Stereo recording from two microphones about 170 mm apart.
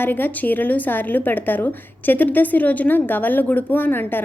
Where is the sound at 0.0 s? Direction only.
10° left (ahead or behind).